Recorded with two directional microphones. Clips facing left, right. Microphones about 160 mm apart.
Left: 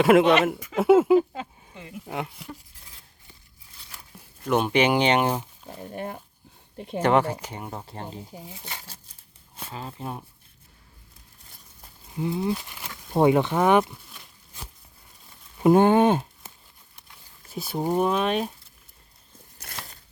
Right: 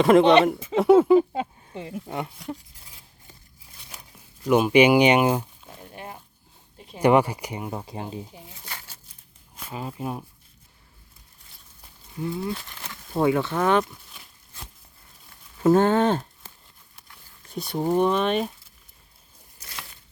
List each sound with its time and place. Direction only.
0.0 s speech: 5° left (ahead or behind)
1.7 s speech: 30° right (ahead or behind)
2.0 s speech: 5° left (ahead or behind)
4.4 s speech: 10° right (ahead or behind)
5.9 s speech: 50° left (ahead or behind)
6.7 s speech: 60° left (ahead or behind)
7.0 s speech: 10° right (ahead or behind)
9.7 s speech: 10° right (ahead or behind)
12.1 s speech: 20° left (ahead or behind)
13.1 s speech: 20° left (ahead or behind)
15.6 s speech: 15° left (ahead or behind)
17.5 s speech: 5° left (ahead or behind)
19.6 s a sound: 65° left (ahead or behind)